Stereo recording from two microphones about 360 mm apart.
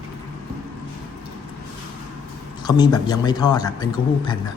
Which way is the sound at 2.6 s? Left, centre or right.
Centre.